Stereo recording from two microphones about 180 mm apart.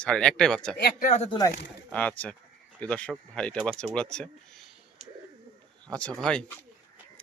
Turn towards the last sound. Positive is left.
turn(degrees=5)  # may be behind; listen again after turning